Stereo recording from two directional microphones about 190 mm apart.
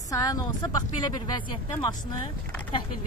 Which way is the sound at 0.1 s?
20° left (ahead or behind).